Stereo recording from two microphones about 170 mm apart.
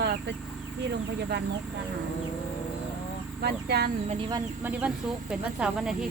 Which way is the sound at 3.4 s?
75° right (ahead or behind).